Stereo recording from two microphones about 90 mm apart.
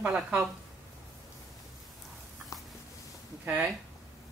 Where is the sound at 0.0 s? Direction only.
10° right (ahead or behind).